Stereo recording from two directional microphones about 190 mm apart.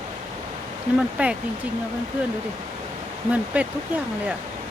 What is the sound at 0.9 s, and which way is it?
Speech, 5° right (ahead or behind).